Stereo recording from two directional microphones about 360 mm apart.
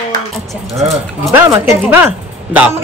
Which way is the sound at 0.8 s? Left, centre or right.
Centre.